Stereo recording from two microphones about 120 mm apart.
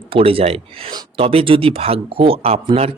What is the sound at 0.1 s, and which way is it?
Speech, 50° right (ahead or behind).